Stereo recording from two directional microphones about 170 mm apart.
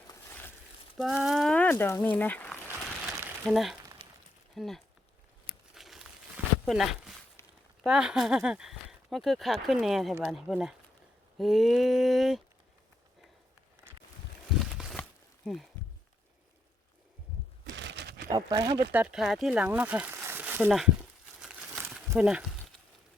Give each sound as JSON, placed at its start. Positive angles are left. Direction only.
{"t": 0.9, "sound": "speech", "side_deg": 0}
{"t": 3.5, "sound": "speech", "side_deg": 0}
{"t": 4.0, "sound": "a sound", "side_deg": -30}
{"t": 4.5, "sound": "speech", "side_deg": 0}
{"t": 5.7, "sound": "crumpling", "side_deg": 0}
{"t": 7.4, "sound": "a sound", "side_deg": 15}
{"t": 7.9, "sound": "speech", "side_deg": -5}
{"t": 14.6, "sound": "a sound", "side_deg": 0}
{"t": 17.7, "sound": "crumpling", "side_deg": -85}
{"t": 18.3, "sound": "speech", "side_deg": -20}
{"t": 18.9, "sound": "speech", "side_deg": -5}
{"t": 21.4, "sound": "crumpling", "side_deg": -5}
{"t": 22.1, "sound": "speech", "side_deg": -5}